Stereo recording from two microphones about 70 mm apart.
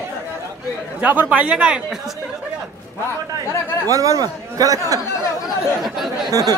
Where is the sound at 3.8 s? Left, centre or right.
Right.